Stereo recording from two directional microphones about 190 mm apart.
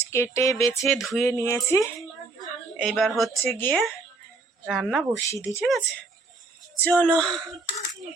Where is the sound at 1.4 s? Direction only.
15° left (ahead or behind).